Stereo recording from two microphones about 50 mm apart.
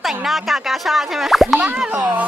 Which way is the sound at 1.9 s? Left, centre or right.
Right.